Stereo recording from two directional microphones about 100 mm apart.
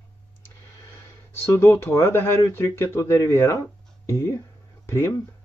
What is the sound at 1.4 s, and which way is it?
Speech, 25° left (ahead or behind).